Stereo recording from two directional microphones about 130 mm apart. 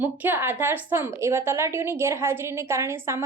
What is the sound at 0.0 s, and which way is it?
A woman's voice, 15° right (ahead or behind).